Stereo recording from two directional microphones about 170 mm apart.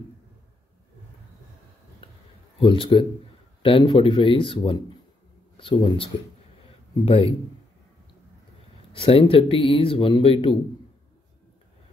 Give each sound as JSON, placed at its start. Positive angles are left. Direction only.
{"t": 2.6, "sound": "speech", "side_deg": 30}
{"t": 7.1, "sound": "speech", "side_deg": 35}
{"t": 8.9, "sound": "speech", "side_deg": 35}